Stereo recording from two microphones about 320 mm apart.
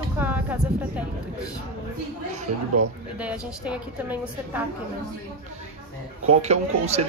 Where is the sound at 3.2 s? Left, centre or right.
Centre.